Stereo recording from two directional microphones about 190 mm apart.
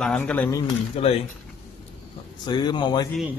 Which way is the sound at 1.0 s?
30° left (ahead or behind).